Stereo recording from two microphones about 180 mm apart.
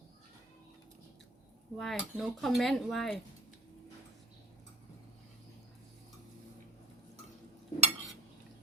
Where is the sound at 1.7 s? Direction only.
Centre (ahead or behind).